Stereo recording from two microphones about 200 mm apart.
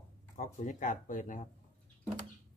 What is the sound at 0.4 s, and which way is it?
Speech, 40° left (ahead or behind).